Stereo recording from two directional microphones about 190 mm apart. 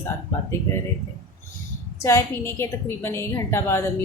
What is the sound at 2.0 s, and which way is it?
A woman's voice, 15° left (ahead or behind).